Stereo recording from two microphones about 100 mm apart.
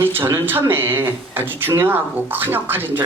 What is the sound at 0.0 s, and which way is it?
Speech, 20° right (ahead or behind).